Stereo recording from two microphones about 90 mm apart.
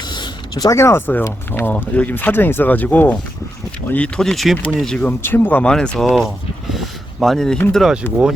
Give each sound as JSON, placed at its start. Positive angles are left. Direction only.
{"t": 0.1, "sound": "a sound", "side_deg": 50}
{"t": 0.8, "sound": "speech", "side_deg": 30}
{"t": 4.2, "sound": "speech", "side_deg": 5}
{"t": 5.0, "sound": "speech", "side_deg": 25}
{"t": 6.1, "sound": "a sound", "side_deg": 0}
{"t": 7.7, "sound": "speech", "side_deg": 0}